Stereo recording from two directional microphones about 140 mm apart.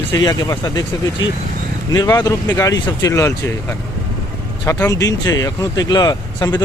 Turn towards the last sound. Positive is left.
turn(degrees=30)  # may be behind; listen again after turning